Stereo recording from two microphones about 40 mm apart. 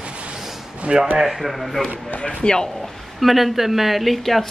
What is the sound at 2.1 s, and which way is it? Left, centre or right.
Speech, left.